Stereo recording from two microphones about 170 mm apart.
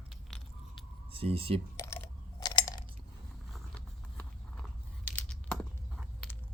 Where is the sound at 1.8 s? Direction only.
15° left (ahead or behind).